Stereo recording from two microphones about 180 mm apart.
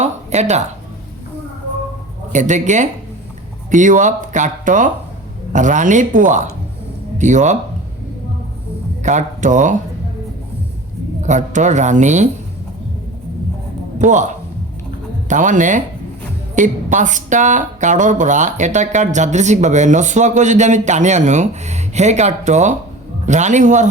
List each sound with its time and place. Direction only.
0.0 s a sound: 40° right (ahead or behind)
2.3 s speech: 40° right (ahead or behind)
9.0 s speech: 45° right (ahead or behind)
11.2 s speech: 40° right (ahead or behind)
14.0 s speech: 45° right (ahead or behind)